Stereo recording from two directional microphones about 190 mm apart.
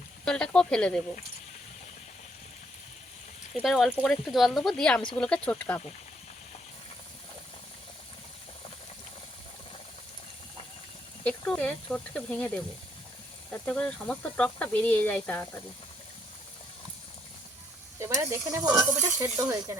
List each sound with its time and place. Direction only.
0.3 s speech: 5° left (ahead or behind)
3.5 s speech: centre (ahead or behind)
11.2 s speech: 5° left (ahead or behind)
18.0 s speech: 15° right (ahead or behind)